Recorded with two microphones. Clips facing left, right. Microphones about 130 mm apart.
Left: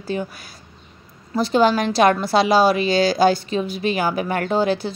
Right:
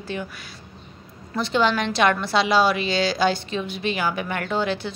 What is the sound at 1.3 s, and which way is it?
A woman's voice, 40° left (ahead or behind).